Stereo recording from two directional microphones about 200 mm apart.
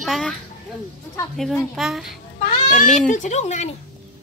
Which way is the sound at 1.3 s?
5° left (ahead or behind).